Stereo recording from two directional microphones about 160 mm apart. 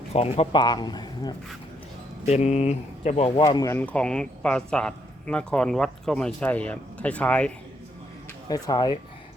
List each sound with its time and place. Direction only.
0.1 s speech: 40° left (ahead or behind)
2.2 s speech: 45° left (ahead or behind)
3.4 s a man's voice: 20° left (ahead or behind)
8.4 s speech: 25° left (ahead or behind)